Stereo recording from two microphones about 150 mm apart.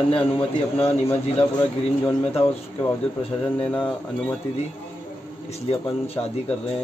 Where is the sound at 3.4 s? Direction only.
10° left (ahead or behind).